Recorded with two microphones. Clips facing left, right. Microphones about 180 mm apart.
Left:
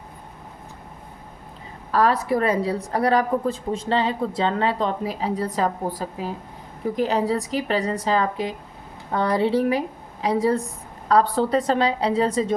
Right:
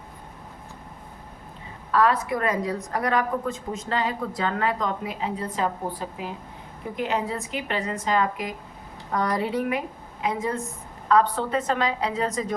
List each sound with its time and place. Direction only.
1.9 s a woman's voice: 35° left (ahead or behind)